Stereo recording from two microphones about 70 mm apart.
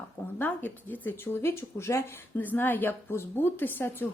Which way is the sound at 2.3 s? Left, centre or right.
Left.